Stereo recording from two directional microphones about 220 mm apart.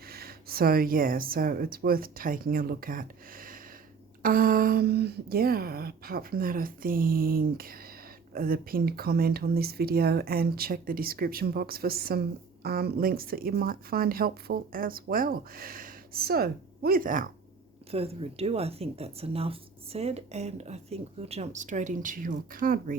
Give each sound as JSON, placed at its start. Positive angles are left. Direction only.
{"t": 0.1, "sound": "speech", "side_deg": -45}
{"t": 17.9, "sound": "speech", "side_deg": -25}